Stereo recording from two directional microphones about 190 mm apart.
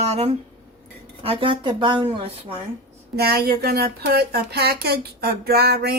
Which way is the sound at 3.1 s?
55° right (ahead or behind).